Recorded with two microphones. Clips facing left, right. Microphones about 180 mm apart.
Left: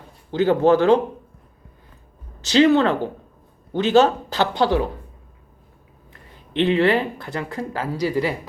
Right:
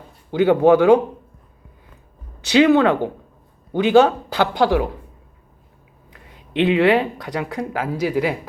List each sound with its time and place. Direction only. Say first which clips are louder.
0.3 s speech: right 3 dB; 15° right (ahead or behind)
2.5 s speech: right 2 dB; 10° right (ahead or behind)
6.6 s speech: right 2 dB; 10° right (ahead or behind)